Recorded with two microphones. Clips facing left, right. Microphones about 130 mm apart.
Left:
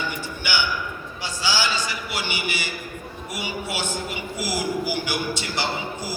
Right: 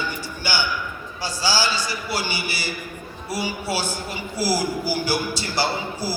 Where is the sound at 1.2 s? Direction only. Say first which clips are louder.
Right 2 dB; 35° right (ahead or behind).